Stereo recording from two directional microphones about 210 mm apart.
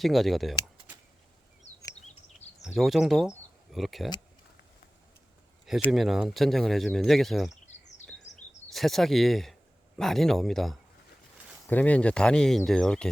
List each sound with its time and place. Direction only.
0.0 s speech: centre (ahead or behind)
2.0 s a sound: 30° left (ahead or behind)
2.6 s speech: centre (ahead or behind)
5.6 s speech: centre (ahead or behind)
8.4 s a sound: 35° left (ahead or behind)
8.7 s speech: centre (ahead or behind)